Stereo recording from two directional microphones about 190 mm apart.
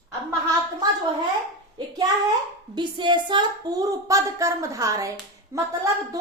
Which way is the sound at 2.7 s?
25° right (ahead or behind).